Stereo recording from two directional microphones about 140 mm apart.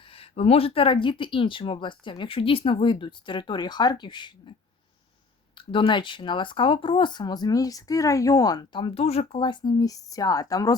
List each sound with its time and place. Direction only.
0.0 s speech: 45° left (ahead or behind)
5.5 s speech: 35° left (ahead or behind)
9.4 s speech: 35° left (ahead or behind)